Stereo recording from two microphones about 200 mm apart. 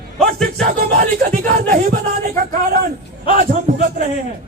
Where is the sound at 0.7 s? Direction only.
40° right (ahead or behind).